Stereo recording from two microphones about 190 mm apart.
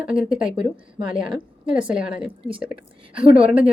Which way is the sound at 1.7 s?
5° right (ahead or behind).